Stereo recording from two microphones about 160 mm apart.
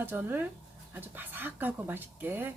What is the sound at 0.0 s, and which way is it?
Speech, 10° right (ahead or behind).